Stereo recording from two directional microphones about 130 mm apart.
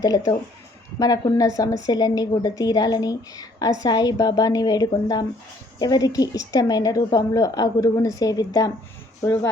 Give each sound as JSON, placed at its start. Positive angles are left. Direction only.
{"t": 0.9, "sound": "a woman's voice", "side_deg": 30}